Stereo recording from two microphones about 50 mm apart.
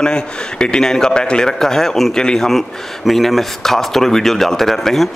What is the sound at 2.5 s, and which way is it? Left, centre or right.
Speech, centre.